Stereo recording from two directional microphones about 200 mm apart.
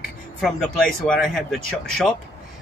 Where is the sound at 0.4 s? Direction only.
Centre (ahead or behind).